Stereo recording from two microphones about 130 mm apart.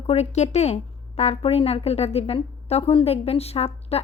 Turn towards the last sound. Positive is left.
turn(degrees=50)  # may be behind; listen again after turning